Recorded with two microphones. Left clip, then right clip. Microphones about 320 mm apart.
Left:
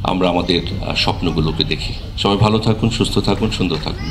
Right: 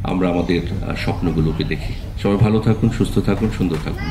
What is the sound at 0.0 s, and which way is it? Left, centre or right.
Speech, left.